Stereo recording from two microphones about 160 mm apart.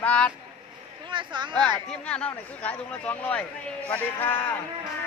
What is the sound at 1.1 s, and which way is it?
Speech, 30° right (ahead or behind).